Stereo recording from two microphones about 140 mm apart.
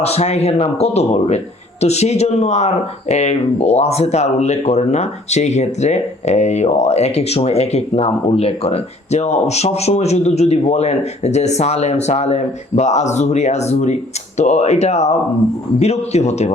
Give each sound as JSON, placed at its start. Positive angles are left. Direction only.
{"t": 0.0, "sound": "speech", "side_deg": 45}